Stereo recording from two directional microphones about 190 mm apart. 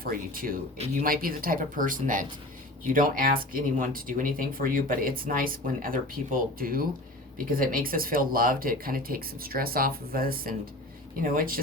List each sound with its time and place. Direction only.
0.0 s speech: 50° right (ahead or behind)